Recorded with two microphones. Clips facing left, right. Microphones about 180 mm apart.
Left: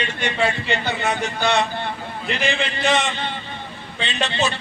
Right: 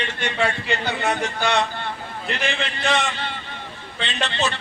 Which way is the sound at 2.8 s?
20° left (ahead or behind).